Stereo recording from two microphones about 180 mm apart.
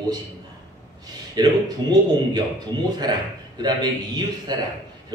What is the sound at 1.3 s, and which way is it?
A man's voice, 20° right (ahead or behind).